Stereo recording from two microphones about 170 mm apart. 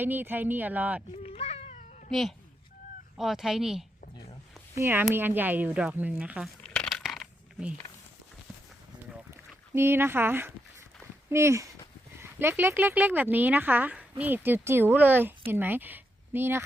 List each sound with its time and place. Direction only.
0.0 s speech: 10° right (ahead or behind)
1.1 s cat: 35° left (ahead or behind)
2.0 s speech: centre (ahead or behind)
6.6 s coin: 5° left (ahead or behind)
9.7 s speech: 15° right (ahead or behind)